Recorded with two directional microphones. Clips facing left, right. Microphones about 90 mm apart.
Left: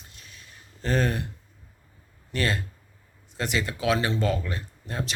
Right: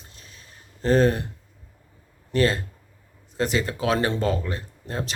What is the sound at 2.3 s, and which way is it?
Speech, 35° right (ahead or behind).